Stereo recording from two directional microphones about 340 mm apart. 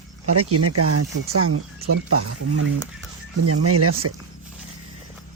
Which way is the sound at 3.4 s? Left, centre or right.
Right.